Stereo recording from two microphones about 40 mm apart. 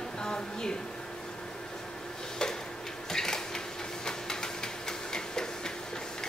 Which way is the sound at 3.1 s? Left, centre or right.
Centre.